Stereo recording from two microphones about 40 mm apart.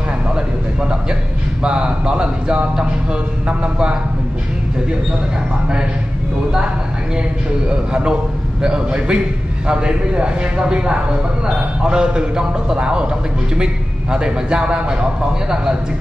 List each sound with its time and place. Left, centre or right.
1.6 s a man's voice: right
7.7 s a man's voice: right
14.1 s a man's voice: right